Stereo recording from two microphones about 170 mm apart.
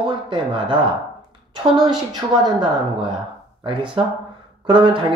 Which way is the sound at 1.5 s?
30° right (ahead or behind).